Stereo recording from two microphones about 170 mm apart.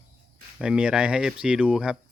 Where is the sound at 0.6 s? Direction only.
5° right (ahead or behind).